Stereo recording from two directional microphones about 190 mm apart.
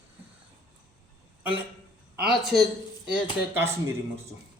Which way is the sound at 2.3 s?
Centre (ahead or behind).